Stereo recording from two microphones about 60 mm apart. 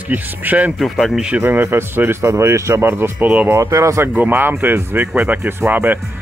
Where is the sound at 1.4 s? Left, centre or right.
Right.